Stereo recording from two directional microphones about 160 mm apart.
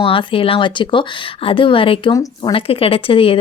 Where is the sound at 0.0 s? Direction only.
35° left (ahead or behind).